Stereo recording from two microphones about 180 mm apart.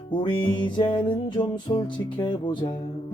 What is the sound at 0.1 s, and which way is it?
Music, 25° left (ahead or behind).